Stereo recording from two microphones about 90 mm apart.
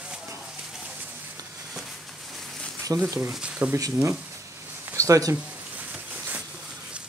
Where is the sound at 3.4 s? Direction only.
15° right (ahead or behind).